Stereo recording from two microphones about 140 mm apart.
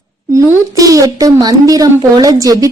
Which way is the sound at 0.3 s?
25° right (ahead or behind).